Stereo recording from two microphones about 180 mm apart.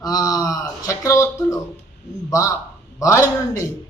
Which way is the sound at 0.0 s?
20° left (ahead or behind).